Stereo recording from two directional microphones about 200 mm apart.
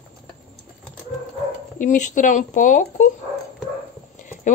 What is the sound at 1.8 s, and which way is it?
Speech, 40° left (ahead or behind).